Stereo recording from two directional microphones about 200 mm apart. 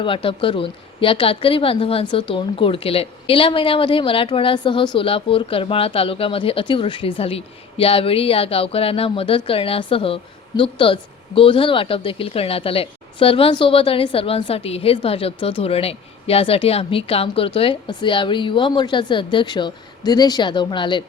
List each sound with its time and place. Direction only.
0.0 s speech: 25° left (ahead or behind)